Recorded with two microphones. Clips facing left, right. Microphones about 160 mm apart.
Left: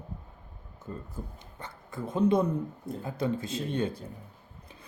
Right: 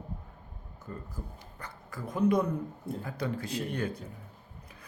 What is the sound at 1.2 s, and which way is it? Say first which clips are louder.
Speech: left 2 dB; 30° left (ahead or behind).